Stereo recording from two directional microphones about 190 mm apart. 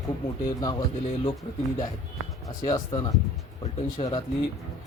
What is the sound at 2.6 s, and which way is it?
Speech, 25° left (ahead or behind).